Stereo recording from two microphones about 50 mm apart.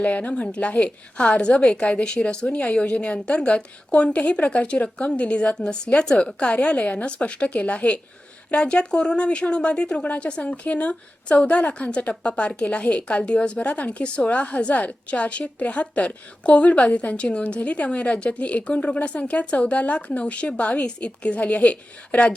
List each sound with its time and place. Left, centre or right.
0.0 s a woman's voice: left
5.5 s a woman's voice: centre; by 7.9 s left
8.5 s speech: centre
10.0 s a woman's voice: left